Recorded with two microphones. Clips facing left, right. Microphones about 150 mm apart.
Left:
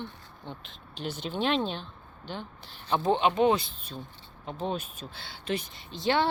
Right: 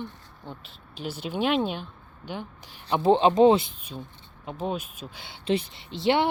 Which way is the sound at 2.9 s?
25° right (ahead or behind).